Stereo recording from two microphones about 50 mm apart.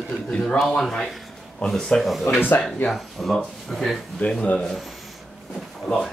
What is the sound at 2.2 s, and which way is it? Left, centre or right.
Speech, left.